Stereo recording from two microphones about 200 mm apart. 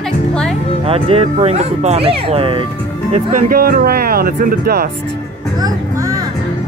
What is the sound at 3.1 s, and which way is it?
Speech, 40° right (ahead or behind).